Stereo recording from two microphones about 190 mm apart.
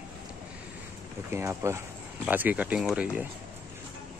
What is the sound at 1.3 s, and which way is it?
Speech, 15° right (ahead or behind).